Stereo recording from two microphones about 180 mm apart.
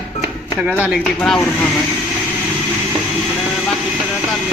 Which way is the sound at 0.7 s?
5° right (ahead or behind).